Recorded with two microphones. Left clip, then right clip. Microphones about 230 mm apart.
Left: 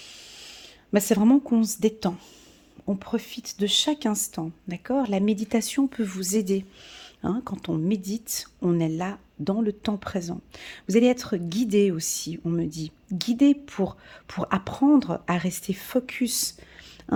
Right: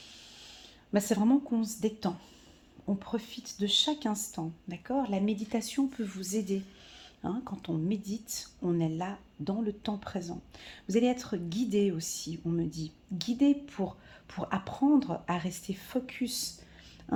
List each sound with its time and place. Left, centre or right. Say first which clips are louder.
0.3 s speech: left 7 dB; left